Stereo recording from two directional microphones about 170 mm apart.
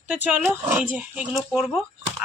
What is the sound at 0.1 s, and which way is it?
A woman's voice, 10° right (ahead or behind).